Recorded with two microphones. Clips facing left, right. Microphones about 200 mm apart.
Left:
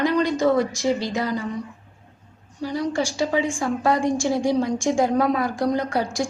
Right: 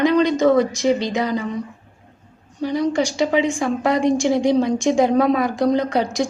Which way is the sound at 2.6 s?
20° right (ahead or behind).